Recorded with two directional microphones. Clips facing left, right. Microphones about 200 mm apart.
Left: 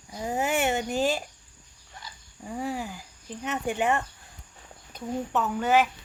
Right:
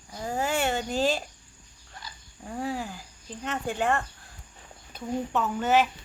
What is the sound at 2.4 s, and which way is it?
Speech, 5° left (ahead or behind).